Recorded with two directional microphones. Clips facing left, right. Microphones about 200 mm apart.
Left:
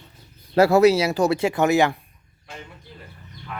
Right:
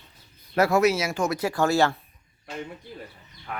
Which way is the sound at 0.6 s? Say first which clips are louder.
Left 6 dB; 30° left (ahead or behind).